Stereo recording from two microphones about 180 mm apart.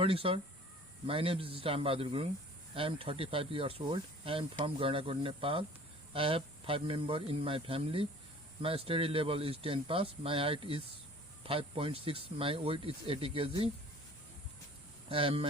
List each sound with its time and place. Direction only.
0.0 s speech: 30° right (ahead or behind)
15.1 s speech: 30° right (ahead or behind)